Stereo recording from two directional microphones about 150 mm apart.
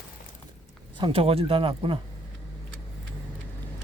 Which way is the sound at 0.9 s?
35° right (ahead or behind).